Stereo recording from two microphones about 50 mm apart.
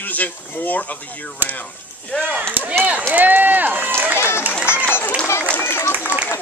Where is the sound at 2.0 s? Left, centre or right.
Centre.